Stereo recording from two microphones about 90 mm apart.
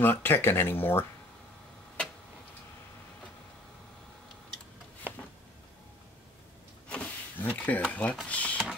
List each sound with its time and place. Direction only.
0.0 s speech: 25° left (ahead or behind)
6.9 s a sound: 20° left (ahead or behind)
7.9 s speech: 15° left (ahead or behind)